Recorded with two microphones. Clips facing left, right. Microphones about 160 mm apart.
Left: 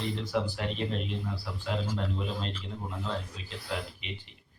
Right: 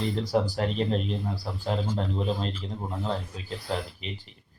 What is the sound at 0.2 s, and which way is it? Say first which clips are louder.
Speech: right 8 dB; 40° right (ahead or behind).